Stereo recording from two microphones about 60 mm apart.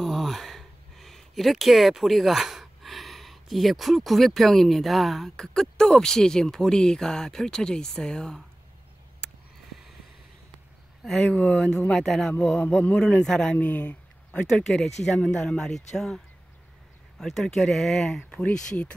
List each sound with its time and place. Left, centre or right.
0.0 s speech: centre
9.2 s a sound: centre
11.0 s speech: centre
11.4 s a man's voice: centre
12.8 s a man's voice: centre
13.6 s speech: left
14.4 s a man's voice: centre
17.2 s a man's voice: centre